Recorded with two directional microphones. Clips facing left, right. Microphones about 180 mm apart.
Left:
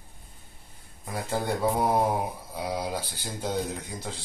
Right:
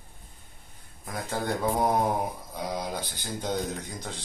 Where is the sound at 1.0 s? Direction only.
5° left (ahead or behind).